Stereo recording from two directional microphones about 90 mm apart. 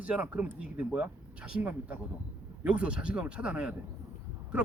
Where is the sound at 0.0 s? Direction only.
15° right (ahead or behind).